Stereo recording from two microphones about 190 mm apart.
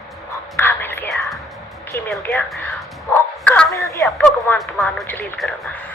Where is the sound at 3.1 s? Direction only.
5° left (ahead or behind).